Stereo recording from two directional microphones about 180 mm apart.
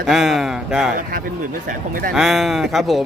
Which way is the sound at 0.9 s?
50° right (ahead or behind).